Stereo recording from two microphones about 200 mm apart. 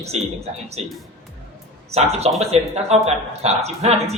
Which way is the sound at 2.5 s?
30° right (ahead or behind).